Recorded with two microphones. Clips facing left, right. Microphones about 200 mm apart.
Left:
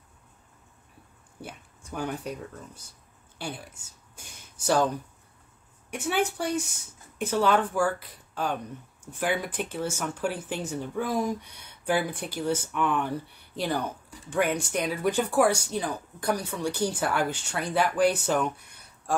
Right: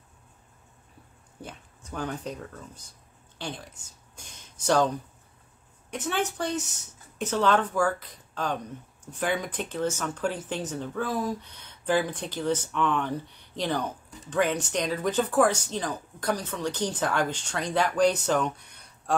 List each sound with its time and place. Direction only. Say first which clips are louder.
1.4 s speech: even; 10° left (ahead or behind)
3.3 s a sound: even; 10° left (ahead or behind)
5.9 s speech: left 2 dB; 10° left (ahead or behind)